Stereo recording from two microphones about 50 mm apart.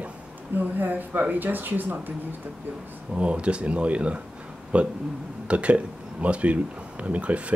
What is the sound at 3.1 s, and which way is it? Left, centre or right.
Speech, right.